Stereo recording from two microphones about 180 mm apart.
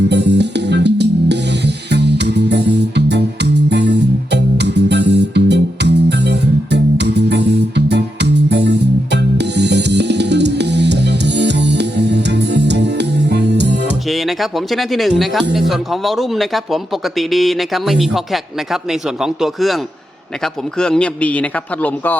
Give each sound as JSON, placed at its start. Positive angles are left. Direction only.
{"t": 0.1, "sound": "music", "side_deg": -70}
{"t": 14.1, "sound": "speech", "side_deg": 0}
{"t": 19.2, "sound": "speech", "side_deg": 0}